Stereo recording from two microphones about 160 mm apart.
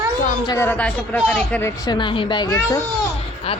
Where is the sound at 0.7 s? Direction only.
10° left (ahead or behind).